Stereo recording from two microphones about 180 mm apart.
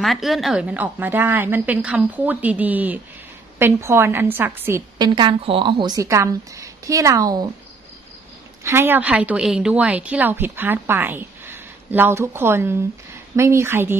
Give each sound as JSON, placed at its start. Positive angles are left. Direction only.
{"t": 0.0, "sound": "a woman's voice", "side_deg": 0}
{"t": 8.6, "sound": "a woman's voice", "side_deg": -10}